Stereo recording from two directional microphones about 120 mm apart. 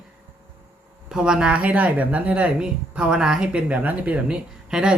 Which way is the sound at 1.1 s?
5° right (ahead or behind).